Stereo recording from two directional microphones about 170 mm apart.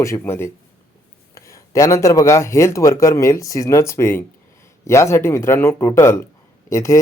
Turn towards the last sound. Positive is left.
turn(degrees=15)  # may be behind; listen again after turning